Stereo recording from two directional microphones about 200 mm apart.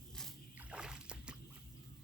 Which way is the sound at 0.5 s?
5° right (ahead or behind).